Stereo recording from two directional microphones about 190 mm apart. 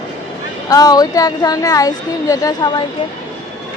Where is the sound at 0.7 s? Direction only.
20° left (ahead or behind).